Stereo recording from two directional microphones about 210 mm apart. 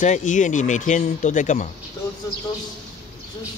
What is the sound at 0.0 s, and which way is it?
Speech, 35° left (ahead or behind).